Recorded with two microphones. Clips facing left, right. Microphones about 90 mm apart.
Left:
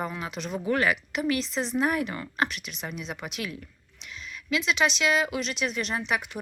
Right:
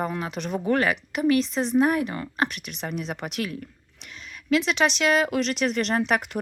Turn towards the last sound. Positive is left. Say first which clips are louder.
# right 6 dB
turn(degrees=-55)  # may be behind; listen again after turning